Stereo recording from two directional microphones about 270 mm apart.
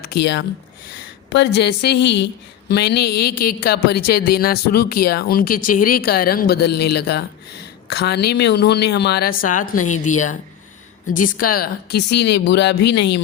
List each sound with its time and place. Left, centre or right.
0.0 s a woman's voice: left